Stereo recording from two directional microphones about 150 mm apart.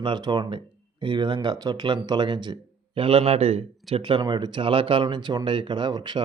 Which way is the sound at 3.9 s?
35° right (ahead or behind).